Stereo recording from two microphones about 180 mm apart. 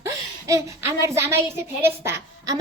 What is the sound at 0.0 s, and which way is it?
A woman's voice, 15° right (ahead or behind).